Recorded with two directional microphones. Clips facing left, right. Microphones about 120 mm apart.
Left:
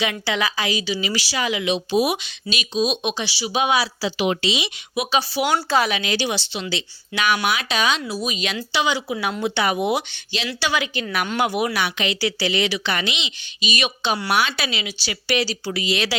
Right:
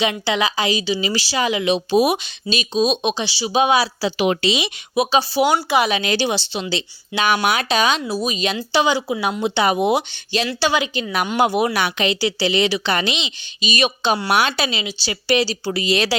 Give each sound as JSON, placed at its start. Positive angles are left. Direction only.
{"t": 0.0, "sound": "a woman's voice", "side_deg": -25}
{"t": 4.2, "sound": "speech", "side_deg": -55}
{"t": 4.9, "sound": "a woman's voice", "side_deg": -30}
{"t": 5.5, "sound": "speech", "side_deg": -15}
{"t": 6.1, "sound": "a woman's voice", "side_deg": -35}
{"t": 7.1, "sound": "speech", "side_deg": -20}
{"t": 7.5, "sound": "a woman's voice", "side_deg": -40}
{"t": 9.4, "sound": "a woman's voice", "side_deg": -25}
{"t": 11.7, "sound": "speech", "side_deg": -45}
{"t": 12.0, "sound": "a woman's voice", "side_deg": -30}
{"t": 14.3, "sound": "a woman's voice", "side_deg": -60}
{"t": 14.5, "sound": "a woman's voice", "side_deg": -30}